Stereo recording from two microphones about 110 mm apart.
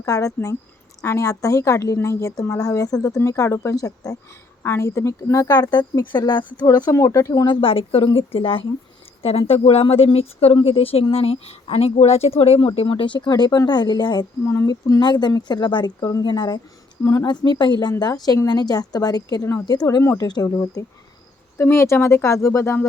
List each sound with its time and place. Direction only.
0.0 s speech: 30° left (ahead or behind)
7.4 s speech: 50° left (ahead or behind)
14.4 s speech: 25° left (ahead or behind)